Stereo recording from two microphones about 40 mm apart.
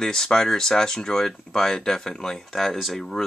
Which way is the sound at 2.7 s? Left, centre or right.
Centre.